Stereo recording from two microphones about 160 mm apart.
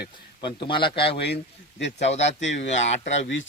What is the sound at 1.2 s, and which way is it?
Speech, 90° left.